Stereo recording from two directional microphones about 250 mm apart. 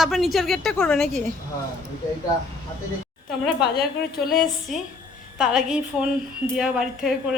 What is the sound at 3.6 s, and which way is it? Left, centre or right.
Speech, left.